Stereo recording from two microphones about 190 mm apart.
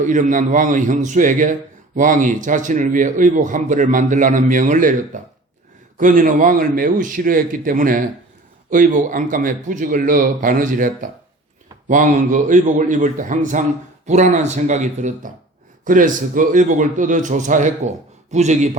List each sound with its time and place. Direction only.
0.0 s a man's voice: 40° right (ahead or behind)
6.0 s a man's voice: 45° right (ahead or behind)